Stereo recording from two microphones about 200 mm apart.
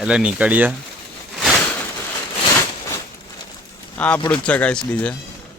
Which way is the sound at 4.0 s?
5° left (ahead or behind).